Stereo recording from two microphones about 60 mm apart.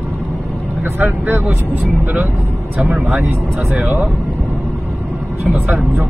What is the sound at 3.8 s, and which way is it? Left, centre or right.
Speech, right.